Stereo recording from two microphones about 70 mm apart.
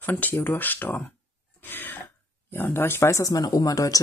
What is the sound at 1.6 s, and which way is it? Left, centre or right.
Throat clearing, left.